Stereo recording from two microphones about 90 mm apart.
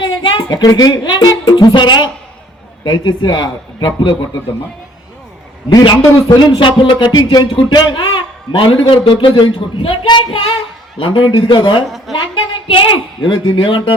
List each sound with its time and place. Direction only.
0.0 s a man's voice: 65° left (ahead or behind)
5.6 s a man's voice: 60° left (ahead or behind)
11.9 s a woman's voice: centre (ahead or behind)
12.1 s a woman's voice: 70° left (ahead or behind)